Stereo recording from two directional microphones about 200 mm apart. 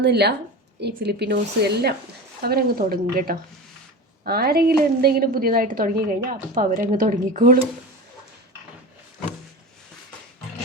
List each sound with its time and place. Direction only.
0.0 s a woman's voice: 55° right (ahead or behind)